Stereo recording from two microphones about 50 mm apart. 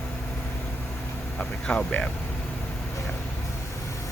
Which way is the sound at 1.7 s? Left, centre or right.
Left.